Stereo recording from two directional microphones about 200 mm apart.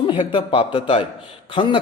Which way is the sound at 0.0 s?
25° left (ahead or behind).